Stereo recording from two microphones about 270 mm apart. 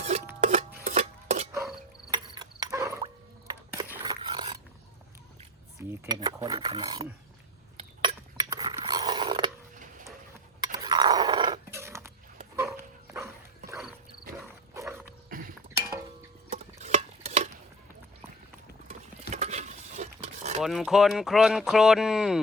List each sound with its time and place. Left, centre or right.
0.4 s chopping: right
1.5 s insect: centre
5.9 s filing: centre
7.8 s a sound: centre
10.6 s a sound: centre
12.5 s dog: centre
14.7 s dog: centre
15.3 s chink: right
16.5 s stir: right
19.3 s a sound: right
20.6 s speech: centre